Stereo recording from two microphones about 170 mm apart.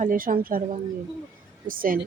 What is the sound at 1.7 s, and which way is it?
Speech, 55° right (ahead or behind).